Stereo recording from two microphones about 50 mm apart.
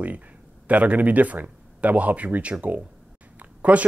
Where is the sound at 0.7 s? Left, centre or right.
Right.